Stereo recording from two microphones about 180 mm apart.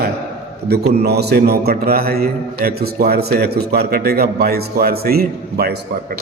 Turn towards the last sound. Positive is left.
turn(degrees=-60)  # may be behind; listen again after turning